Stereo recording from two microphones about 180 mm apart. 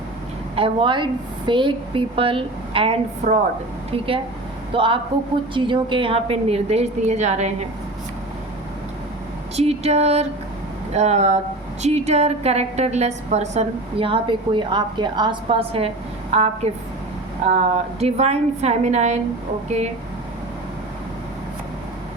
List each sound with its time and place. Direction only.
0.5 s a woman's voice: 30° right (ahead or behind)
9.6 s a woman's voice: 35° right (ahead or behind)